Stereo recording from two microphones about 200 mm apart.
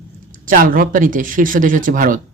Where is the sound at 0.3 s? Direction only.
45° right (ahead or behind).